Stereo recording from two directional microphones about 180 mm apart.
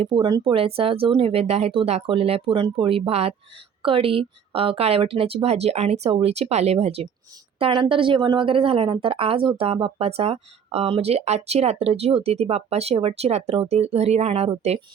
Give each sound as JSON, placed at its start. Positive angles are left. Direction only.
{"t": 0.0, "sound": "speech", "side_deg": -25}